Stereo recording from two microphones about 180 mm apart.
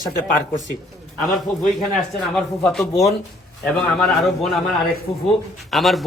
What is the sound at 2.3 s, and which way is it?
Speech, centre (ahead or behind).